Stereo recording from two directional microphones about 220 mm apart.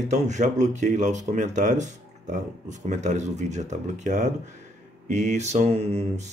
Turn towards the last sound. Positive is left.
turn(degrees=-30)  # may be behind; listen again after turning